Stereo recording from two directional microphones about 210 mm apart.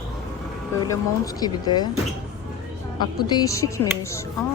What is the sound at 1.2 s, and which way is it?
Speech, 15° left (ahead or behind).